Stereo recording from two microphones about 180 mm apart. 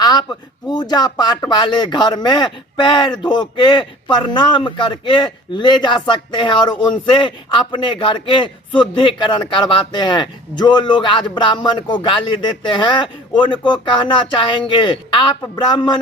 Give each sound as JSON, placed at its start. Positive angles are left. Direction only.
{"t": 0.0, "sound": "speech", "side_deg": 20}